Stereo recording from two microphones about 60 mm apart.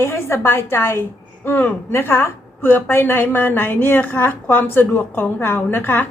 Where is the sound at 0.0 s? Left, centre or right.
Left.